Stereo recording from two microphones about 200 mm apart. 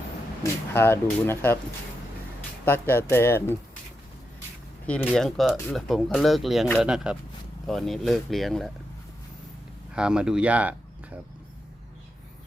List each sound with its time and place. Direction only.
0.7 s speech: 10° left (ahead or behind)
2.6 s speech: 10° left (ahead or behind)
4.9 s speech: 5° left (ahead or behind)
9.9 s speech: 5° right (ahead or behind)